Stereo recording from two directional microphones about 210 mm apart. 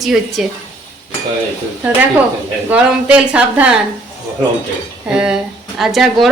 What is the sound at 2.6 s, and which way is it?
Speech, 5° right (ahead or behind).